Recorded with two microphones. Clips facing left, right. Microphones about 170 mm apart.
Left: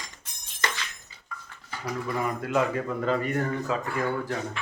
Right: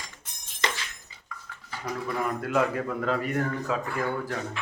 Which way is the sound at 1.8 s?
Centre (ahead or behind).